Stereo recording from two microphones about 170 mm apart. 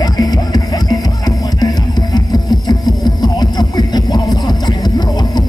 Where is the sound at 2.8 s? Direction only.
25° left (ahead or behind).